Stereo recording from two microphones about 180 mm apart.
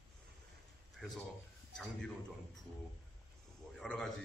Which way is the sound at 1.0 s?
5° left (ahead or behind).